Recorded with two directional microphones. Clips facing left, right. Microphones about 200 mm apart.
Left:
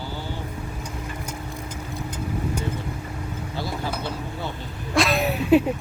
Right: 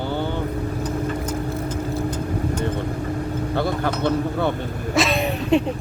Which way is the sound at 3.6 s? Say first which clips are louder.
Right 6 dB; 60° right (ahead or behind).